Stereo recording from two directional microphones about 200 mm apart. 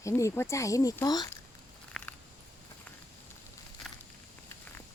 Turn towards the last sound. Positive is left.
turn(degrees=0)  # may be behind; listen again after turning